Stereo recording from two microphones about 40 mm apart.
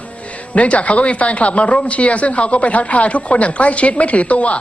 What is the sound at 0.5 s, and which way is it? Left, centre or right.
Speech, left.